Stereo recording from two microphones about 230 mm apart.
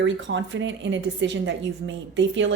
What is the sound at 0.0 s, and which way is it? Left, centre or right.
Speech, right.